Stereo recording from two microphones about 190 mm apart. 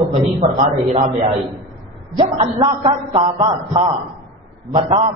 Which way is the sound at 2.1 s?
30° right (ahead or behind).